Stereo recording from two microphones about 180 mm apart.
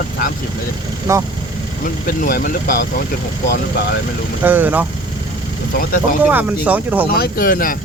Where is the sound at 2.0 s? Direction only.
50° left (ahead or behind).